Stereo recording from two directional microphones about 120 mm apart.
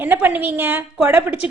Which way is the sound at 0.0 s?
15° right (ahead or behind).